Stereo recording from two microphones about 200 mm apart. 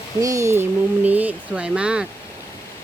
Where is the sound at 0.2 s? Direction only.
15° right (ahead or behind).